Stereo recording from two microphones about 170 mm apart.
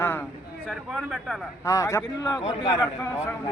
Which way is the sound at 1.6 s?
20° left (ahead or behind).